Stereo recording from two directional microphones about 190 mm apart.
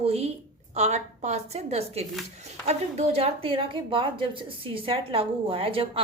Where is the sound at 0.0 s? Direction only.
30° right (ahead or behind).